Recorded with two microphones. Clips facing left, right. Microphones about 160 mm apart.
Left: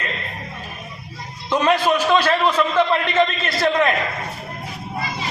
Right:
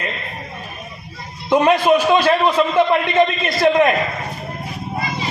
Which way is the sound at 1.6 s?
15° right (ahead or behind).